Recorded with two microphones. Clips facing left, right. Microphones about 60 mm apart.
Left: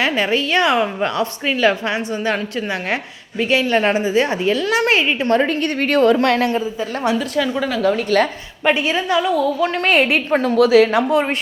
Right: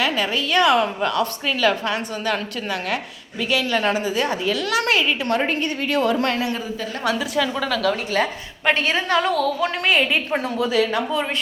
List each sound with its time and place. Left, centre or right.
0.0 s a woman's voice: left
3.5 s a woman's voice: left
5.5 s a woman's voice: left
6.2 s a woman's voice: left
6.7 s a woman's voice: centre
7.2 s a woman's voice: centre
9.1 s a woman's voice: right
9.8 s a woman's voice: left
10.6 s speech: left